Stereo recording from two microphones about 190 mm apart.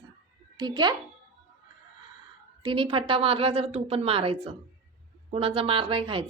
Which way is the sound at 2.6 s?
25° right (ahead or behind).